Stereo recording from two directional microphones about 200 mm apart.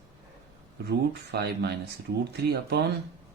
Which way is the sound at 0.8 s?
55° right (ahead or behind).